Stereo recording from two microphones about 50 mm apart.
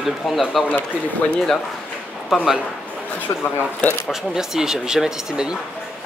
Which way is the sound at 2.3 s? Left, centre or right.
Centre.